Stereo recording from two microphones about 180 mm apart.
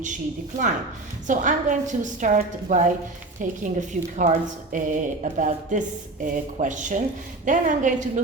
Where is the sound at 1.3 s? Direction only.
45° right (ahead or behind).